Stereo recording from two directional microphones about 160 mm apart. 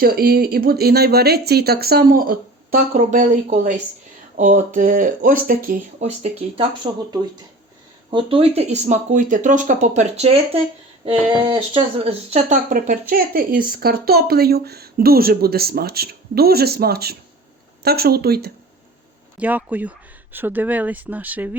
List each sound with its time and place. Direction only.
0.0 s speech: 70° right (ahead or behind)
6.0 s speech: 45° right (ahead or behind)
8.1 s speech: 35° right (ahead or behind)
12.7 s speech: 60° right (ahead or behind); by 18.5 s 80° right
19.4 s speech: 10° right (ahead or behind)